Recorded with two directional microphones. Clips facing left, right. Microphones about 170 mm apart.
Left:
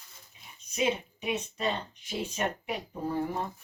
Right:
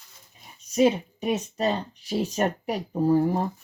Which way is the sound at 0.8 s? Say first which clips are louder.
Right 9 dB; 40° right (ahead or behind).